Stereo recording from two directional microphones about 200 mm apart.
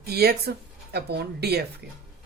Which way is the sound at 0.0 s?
50° right (ahead or behind).